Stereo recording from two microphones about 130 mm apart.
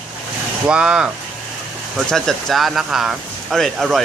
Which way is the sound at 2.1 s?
Centre (ahead or behind).